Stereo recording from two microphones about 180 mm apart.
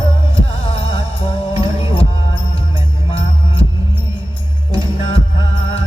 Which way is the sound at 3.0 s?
30° left (ahead or behind).